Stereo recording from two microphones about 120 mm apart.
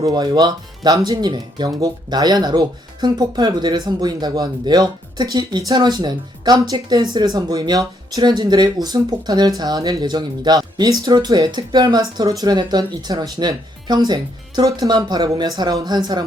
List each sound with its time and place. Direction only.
0.0 s speech: 35° right (ahead or behind)